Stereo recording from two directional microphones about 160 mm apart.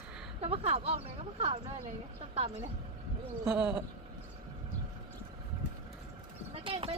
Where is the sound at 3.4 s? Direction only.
5° right (ahead or behind).